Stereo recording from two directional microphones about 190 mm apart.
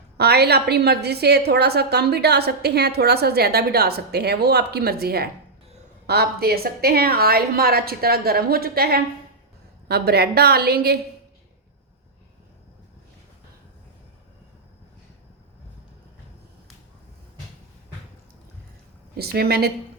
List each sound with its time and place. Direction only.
0.2 s a woman's voice: 55° right (ahead or behind)
19.1 s a woman's voice: 55° right (ahead or behind)